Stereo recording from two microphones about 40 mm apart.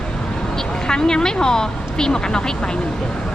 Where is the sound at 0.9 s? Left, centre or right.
Centre.